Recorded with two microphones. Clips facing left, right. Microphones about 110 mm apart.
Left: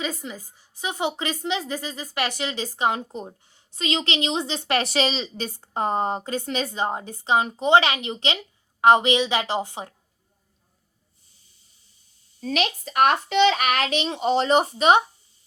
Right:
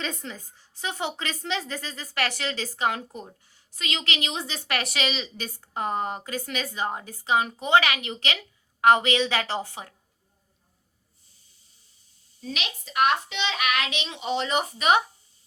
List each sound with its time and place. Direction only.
0.0 s a woman's voice: 10° left (ahead or behind)
12.4 s a woman's voice: 50° left (ahead or behind); by 15.0 s 30° left (ahead or behind)